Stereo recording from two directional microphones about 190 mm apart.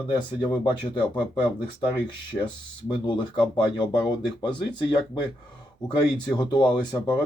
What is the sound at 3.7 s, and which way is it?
Speech, 25° left (ahead or behind).